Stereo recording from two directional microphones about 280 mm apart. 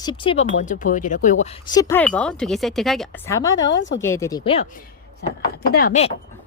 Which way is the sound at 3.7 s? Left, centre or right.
Left.